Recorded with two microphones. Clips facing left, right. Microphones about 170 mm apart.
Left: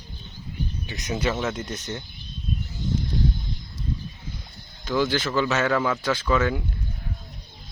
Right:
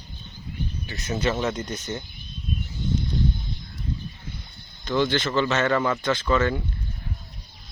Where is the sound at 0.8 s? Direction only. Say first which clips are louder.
Right 1 dB; 15° left (ahead or behind).